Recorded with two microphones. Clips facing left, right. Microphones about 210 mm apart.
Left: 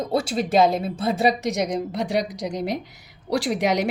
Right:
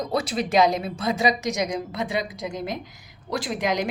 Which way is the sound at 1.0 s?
55° left (ahead or behind).